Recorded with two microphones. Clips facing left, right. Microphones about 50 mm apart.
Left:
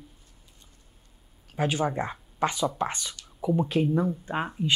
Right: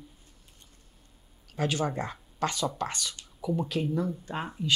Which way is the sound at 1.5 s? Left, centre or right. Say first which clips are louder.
Left 3 dB; left.